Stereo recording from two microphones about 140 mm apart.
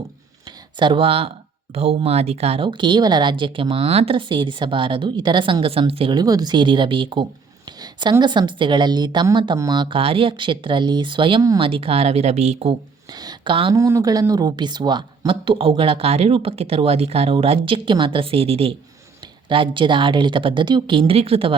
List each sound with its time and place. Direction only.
0.8 s speech: 35° right (ahead or behind)
7.8 s a sound: 35° right (ahead or behind)
8.2 s speech: 35° right (ahead or behind); by 12.7 s 50° right (ahead or behind)
13.1 s speech: 30° right (ahead or behind)
13.7 s speech: 20° right (ahead or behind); by 21.5 s 45° right (ahead or behind)